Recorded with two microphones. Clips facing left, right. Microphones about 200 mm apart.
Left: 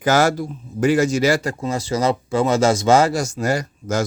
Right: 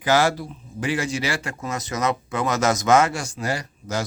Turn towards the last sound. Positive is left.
turn(degrees=45)  # may be behind; listen again after turning